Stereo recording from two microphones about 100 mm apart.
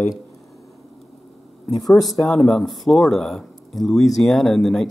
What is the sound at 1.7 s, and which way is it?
Speech, centre (ahead or behind).